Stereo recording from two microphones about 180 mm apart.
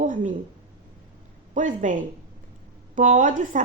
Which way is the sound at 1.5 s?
45° right (ahead or behind).